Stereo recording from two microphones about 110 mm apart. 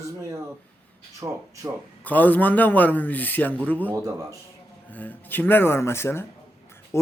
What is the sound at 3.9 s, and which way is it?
Speech, 30° right (ahead or behind).